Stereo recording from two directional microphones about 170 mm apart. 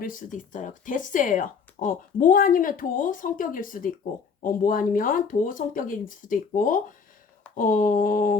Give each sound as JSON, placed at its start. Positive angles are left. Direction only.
{"t": 0.0, "sound": "speech", "side_deg": 50}